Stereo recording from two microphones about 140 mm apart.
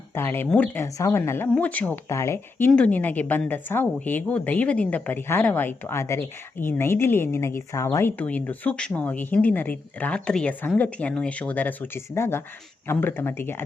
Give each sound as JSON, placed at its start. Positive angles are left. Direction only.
{"t": 0.1, "sound": "a woman's voice", "side_deg": 15}